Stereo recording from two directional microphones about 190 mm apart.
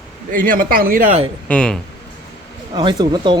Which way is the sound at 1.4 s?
5° left (ahead or behind).